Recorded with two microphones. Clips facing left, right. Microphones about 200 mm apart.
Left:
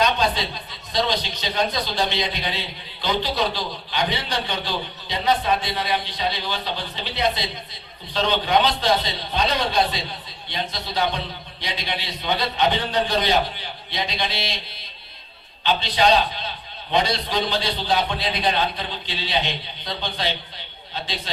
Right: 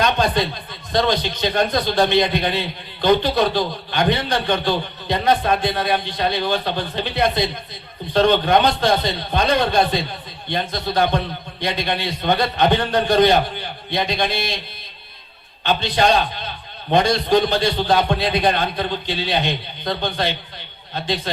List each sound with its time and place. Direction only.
0.0 s a man's voice: 50° right (ahead or behind)
15.6 s a man's voice: 50° right (ahead or behind)